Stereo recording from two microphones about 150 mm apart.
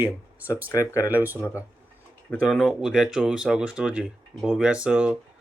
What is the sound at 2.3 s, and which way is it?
Speech, 5° left (ahead or behind).